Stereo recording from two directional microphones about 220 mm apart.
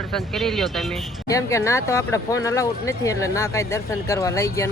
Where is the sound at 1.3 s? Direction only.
15° left (ahead or behind).